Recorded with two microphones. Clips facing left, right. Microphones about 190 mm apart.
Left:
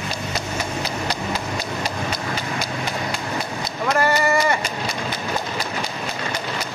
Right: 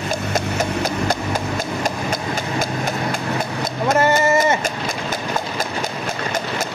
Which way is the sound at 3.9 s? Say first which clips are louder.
Right 3 dB; 20° right (ahead or behind).